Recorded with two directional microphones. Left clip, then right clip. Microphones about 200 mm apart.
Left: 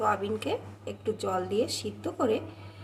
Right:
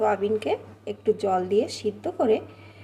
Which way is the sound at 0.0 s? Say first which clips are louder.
Right 5 dB; 25° right (ahead or behind).